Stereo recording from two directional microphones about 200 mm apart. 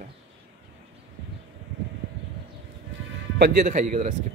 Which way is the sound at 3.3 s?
50° right (ahead or behind).